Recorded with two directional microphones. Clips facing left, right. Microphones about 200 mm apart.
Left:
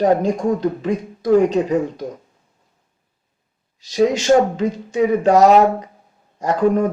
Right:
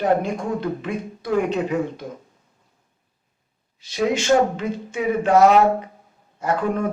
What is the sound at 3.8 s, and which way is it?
Speech, 40° left (ahead or behind).